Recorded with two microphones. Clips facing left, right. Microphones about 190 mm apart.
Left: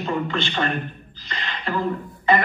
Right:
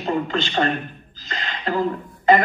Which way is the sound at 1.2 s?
45° right (ahead or behind).